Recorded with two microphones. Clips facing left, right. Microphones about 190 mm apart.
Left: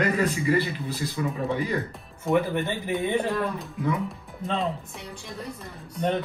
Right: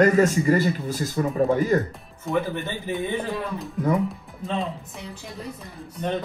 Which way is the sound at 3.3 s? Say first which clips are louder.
Even; centre (ahead or behind).